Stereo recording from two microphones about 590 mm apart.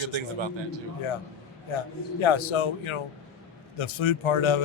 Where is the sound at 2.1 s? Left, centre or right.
Left.